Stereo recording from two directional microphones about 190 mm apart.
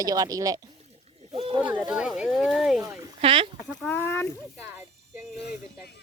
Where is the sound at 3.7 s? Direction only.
5° left (ahead or behind).